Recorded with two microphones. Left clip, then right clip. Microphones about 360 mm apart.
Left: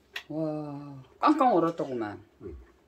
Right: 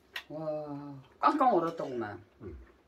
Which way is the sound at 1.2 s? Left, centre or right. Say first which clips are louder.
Left 3 dB; left.